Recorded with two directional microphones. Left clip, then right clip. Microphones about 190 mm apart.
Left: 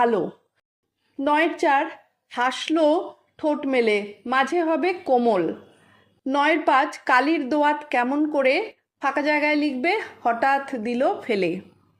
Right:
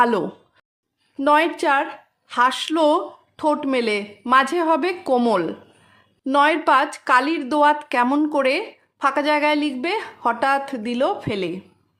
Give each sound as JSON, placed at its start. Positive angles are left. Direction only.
{"t": 0.0, "sound": "a woman's voice", "side_deg": -25}
{"t": 11.3, "sound": "a woman's voice", "side_deg": 0}